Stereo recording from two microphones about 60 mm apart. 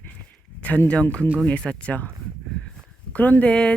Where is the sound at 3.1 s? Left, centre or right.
Left.